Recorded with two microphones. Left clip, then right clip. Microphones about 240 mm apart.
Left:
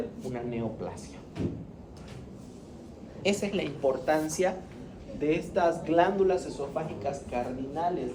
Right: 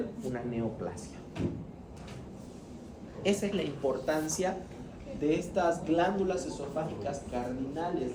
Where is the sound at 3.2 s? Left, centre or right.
Centre.